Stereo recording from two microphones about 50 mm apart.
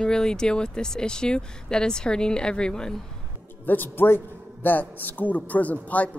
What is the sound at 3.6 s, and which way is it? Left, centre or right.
Speech, left.